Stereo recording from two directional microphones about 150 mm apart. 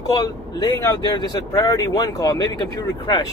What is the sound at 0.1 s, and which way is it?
Speech, 25° left (ahead or behind).